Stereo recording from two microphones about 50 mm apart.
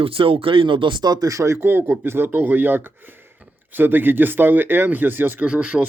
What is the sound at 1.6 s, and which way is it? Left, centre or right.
Speech, right.